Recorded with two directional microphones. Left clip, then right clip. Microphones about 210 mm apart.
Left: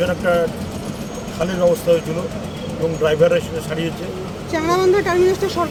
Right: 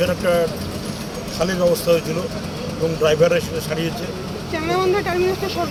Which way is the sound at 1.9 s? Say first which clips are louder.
Left 1 dB; 10° right (ahead or behind).